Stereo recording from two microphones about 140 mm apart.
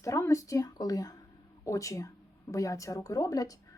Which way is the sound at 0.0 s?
20° left (ahead or behind).